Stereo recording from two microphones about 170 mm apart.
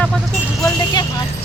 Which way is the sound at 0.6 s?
25° left (ahead or behind).